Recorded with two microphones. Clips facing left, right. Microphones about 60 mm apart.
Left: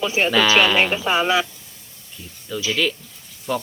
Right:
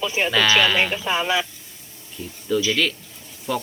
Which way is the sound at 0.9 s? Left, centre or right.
Left.